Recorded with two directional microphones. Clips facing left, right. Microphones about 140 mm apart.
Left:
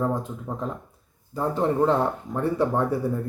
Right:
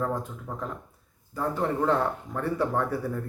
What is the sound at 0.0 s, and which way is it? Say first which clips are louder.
Speech: left 4 dB; 20° left (ahead or behind).